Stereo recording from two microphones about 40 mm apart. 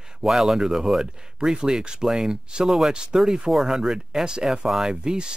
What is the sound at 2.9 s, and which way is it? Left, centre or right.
Speech, right.